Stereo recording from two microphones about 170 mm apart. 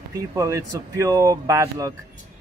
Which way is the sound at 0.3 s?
20° right (ahead or behind).